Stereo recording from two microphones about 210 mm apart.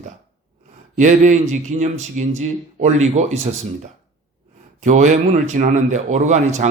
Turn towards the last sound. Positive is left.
turn(degrees=-35)  # may be behind; listen again after turning